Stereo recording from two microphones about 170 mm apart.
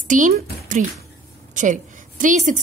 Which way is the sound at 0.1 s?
50° right (ahead or behind).